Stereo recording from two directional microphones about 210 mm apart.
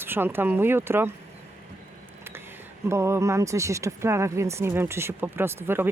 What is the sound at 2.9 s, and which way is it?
Speech, 15° right (ahead or behind).